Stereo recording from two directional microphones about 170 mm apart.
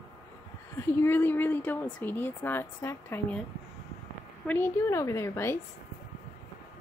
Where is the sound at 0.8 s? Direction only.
15° left (ahead or behind).